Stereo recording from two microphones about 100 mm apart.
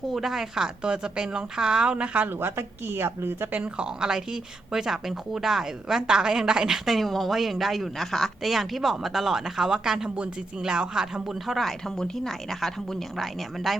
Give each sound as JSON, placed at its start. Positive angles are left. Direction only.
{"t": 0.1, "sound": "a woman's voice", "side_deg": -5}